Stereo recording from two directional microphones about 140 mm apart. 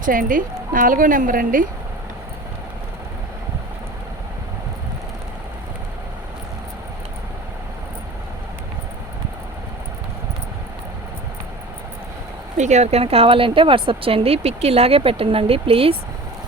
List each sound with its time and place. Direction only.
0.0 s speech: 75° right (ahead or behind)
12.5 s speech: 55° right (ahead or behind)